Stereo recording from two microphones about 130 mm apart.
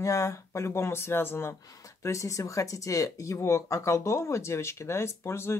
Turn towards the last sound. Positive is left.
turn(degrees=20)  # may be behind; listen again after turning